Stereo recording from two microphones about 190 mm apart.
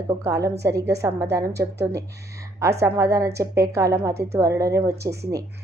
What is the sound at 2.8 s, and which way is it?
A woman's voice, 15° right (ahead or behind).